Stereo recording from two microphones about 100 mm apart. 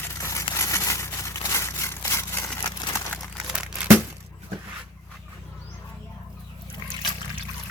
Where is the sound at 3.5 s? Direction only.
10° right (ahead or behind).